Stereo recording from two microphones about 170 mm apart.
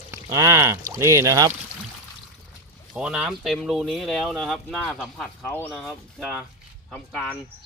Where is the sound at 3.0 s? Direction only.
5° right (ahead or behind).